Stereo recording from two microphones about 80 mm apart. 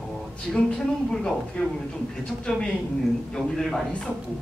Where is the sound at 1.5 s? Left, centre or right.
Centre.